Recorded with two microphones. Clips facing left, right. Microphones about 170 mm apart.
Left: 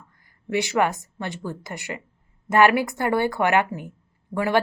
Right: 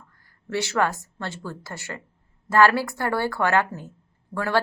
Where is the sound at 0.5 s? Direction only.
15° left (ahead or behind).